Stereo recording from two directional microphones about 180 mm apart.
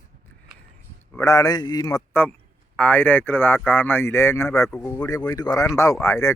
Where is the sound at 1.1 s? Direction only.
15° left (ahead or behind).